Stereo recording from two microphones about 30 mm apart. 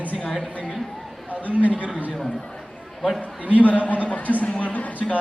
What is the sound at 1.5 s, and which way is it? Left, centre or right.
Speech, right.